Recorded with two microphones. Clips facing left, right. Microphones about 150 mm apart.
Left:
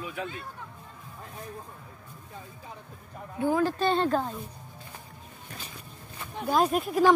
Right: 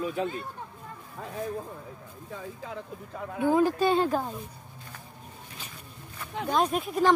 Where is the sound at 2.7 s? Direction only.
90° right.